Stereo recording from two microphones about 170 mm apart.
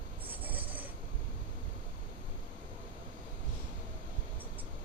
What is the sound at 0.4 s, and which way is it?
Rub, 10° right (ahead or behind).